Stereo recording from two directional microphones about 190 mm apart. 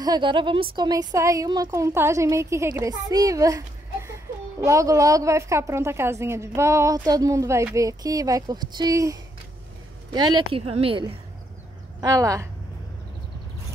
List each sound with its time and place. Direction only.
0.0 s a woman's voice: 25° right (ahead or behind)
12.0 s a woman's voice: 15° right (ahead or behind)